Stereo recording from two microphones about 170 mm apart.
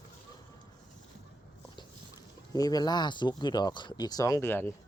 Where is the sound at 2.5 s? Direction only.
20° left (ahead or behind).